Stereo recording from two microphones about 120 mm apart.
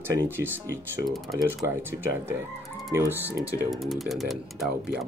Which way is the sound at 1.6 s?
20° right (ahead or behind).